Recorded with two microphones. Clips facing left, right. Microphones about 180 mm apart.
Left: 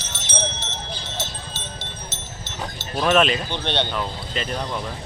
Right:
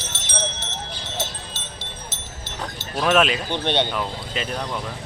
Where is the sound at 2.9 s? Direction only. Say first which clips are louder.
Even; 5° right (ahead or behind).